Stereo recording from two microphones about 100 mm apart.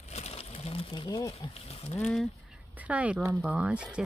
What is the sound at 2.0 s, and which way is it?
Speech, 10° left (ahead or behind).